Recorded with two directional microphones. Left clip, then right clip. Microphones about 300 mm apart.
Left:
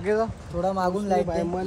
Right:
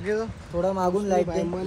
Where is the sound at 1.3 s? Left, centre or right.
Centre.